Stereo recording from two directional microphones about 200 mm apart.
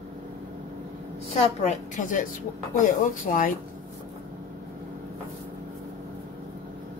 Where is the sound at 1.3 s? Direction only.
35° left (ahead or behind).